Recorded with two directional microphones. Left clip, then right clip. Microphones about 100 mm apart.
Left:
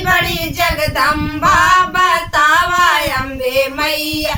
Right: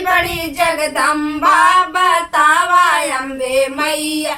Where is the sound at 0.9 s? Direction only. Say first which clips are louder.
Left 1 dB; 15° left (ahead or behind).